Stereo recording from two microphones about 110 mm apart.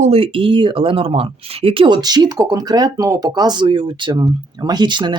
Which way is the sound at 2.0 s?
40° right (ahead or behind).